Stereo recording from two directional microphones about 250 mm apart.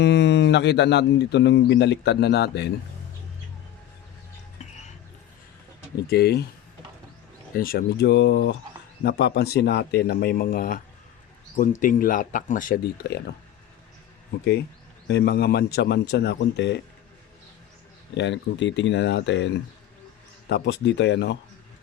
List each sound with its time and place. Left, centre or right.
0.0 s speech: left
6.1 s speech: left
7.5 s speech: left
15.0 s speech: left
18.1 s speech: left
20.5 s speech: left